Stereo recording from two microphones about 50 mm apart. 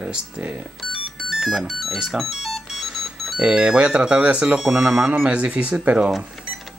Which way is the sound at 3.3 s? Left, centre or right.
Centre.